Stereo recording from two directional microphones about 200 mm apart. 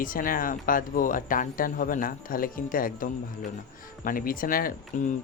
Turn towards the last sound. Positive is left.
turn(degrees=40)  # may be behind; listen again after turning